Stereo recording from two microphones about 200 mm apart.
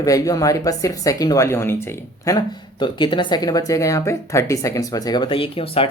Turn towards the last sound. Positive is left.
turn(degrees=30)  # may be behind; listen again after turning